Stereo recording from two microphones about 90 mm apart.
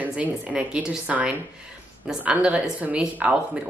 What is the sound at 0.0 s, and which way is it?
Speech, 15° right (ahead or behind).